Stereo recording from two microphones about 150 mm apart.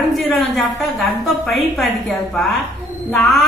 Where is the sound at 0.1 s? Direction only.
Centre (ahead or behind).